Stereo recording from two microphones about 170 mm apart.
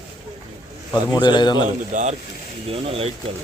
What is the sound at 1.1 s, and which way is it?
Speech, 25° left (ahead or behind).